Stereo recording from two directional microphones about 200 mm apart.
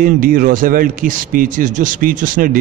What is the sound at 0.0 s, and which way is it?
A man's voice, 45° right (ahead or behind).